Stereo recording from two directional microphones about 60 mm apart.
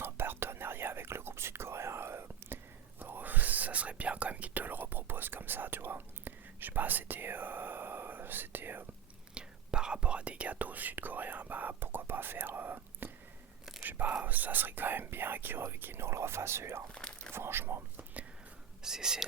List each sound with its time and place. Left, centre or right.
0.0 s whispering: right
3.0 s speech: right
9.3 s speech: centre; by 16.8 s right
16.9 s biting: centre
17.3 s speech: right
18.8 s speech: centre